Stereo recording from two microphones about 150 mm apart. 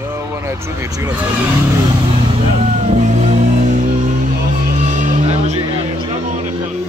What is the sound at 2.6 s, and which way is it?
Music, 45° right (ahead or behind).